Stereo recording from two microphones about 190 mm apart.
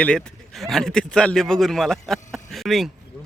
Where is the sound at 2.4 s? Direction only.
Centre (ahead or behind).